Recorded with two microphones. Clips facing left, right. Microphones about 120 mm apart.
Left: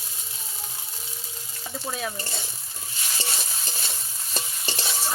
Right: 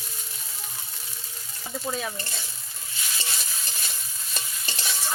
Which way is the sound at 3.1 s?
30° left (ahead or behind).